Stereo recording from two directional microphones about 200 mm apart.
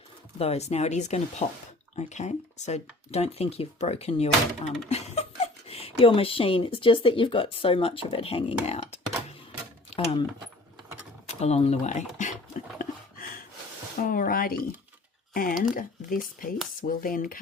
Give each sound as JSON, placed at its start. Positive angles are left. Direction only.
{"t": 0.3, "sound": "speech", "side_deg": 30}
{"t": 11.3, "sound": "speech", "side_deg": 30}
{"t": 12.1, "sound": "a sound", "side_deg": 40}
{"t": 14.0, "sound": "speech", "side_deg": 45}